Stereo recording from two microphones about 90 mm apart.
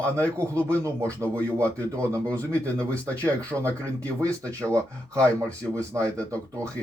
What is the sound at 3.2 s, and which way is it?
Speech, 30° right (ahead or behind).